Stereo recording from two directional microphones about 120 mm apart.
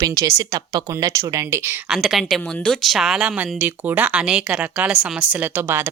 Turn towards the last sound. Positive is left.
turn(degrees=-15)  # may be behind; listen again after turning